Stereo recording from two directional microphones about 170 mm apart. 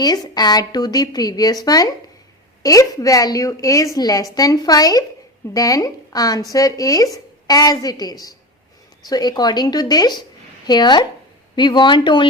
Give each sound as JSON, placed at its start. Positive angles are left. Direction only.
{"t": 0.0, "sound": "a woman's voice", "side_deg": 25}